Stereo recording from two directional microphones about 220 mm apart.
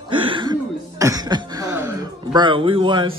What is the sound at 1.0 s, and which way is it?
Speech, 15° right (ahead or behind).